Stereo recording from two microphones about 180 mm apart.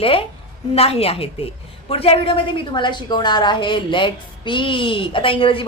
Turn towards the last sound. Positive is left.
turn(degrees=30)  # may be behind; listen again after turning